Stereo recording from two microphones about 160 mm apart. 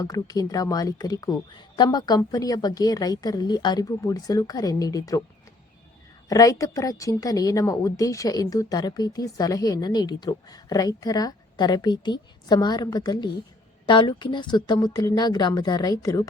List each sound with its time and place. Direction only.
0.0 s a woman's voice: 25° left (ahead or behind)
6.2 s a woman's voice: 20° left (ahead or behind)